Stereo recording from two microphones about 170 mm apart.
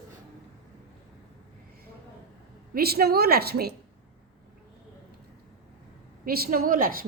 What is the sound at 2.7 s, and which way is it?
A woman's voice, 65° right (ahead or behind).